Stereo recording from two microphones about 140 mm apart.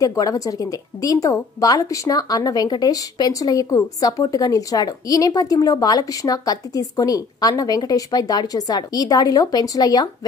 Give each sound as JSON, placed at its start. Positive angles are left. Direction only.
{"t": 0.0, "sound": "speech", "side_deg": 25}